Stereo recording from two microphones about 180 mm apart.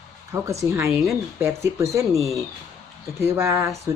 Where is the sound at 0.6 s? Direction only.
15° right (ahead or behind).